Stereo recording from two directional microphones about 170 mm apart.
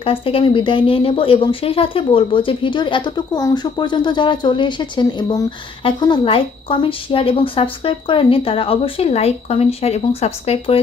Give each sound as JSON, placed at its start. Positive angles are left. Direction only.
{"t": 0.0, "sound": "a woman's voice", "side_deg": 35}